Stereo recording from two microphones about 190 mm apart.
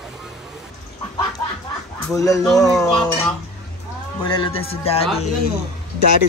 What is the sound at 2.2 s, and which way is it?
Speech, 15° left (ahead or behind).